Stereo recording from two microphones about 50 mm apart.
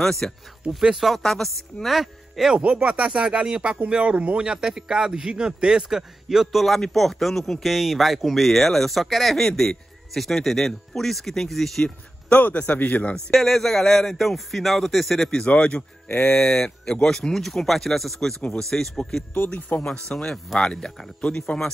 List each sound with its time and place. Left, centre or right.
0.0 s speech: centre
0.9 s speech: centre
1.2 s speech: centre
2.7 s speech: right; by 11.9 s centre
12.3 s a man's voice: left
13.3 s speech: centre
15.2 s speech: centre
19.7 s a man's voice: left
20.1 s speech: centre